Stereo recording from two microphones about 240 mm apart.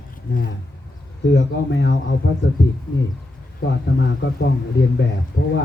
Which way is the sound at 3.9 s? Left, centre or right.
Left.